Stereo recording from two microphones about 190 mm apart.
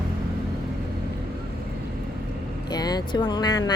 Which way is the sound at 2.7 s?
20° left (ahead or behind).